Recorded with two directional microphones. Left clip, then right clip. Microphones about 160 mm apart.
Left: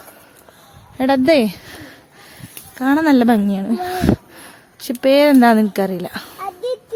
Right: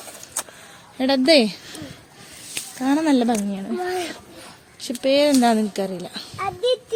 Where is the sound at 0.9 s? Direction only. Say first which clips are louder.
Left 2 dB; 25° left (ahead or behind).